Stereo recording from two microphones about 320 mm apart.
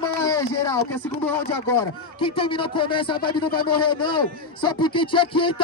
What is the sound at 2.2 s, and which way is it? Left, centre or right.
A man's voice, centre.